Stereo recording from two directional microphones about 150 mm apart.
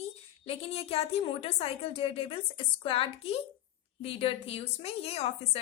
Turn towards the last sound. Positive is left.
turn(degrees=45)  # may be behind; listen again after turning